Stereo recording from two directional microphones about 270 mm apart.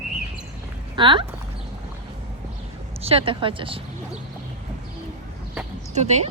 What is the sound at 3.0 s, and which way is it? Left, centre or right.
Speech, centre.